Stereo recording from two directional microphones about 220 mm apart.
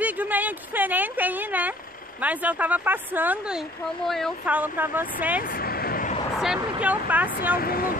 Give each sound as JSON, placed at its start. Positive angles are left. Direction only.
{"t": 0.0, "sound": "a woman's voice", "side_deg": -5}
{"t": 5.5, "sound": "vehicle", "side_deg": 45}
{"t": 6.4, "sound": "speech", "side_deg": -5}
{"t": 7.5, "sound": "speech", "side_deg": 40}